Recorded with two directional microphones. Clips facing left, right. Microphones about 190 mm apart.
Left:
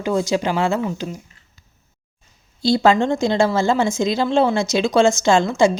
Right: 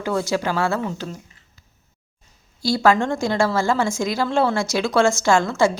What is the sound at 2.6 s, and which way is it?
A woman's voice, 20° left (ahead or behind).